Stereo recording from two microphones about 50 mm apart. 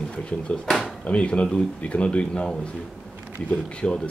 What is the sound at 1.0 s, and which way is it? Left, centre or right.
Speech, left.